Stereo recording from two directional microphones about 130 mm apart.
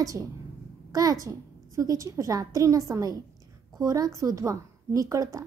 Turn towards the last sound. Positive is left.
turn(degrees=-25)  # may be behind; listen again after turning